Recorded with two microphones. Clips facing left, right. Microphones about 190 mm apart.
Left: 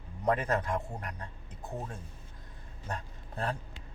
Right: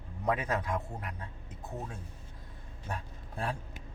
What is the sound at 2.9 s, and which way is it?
Speech, 10° right (ahead or behind).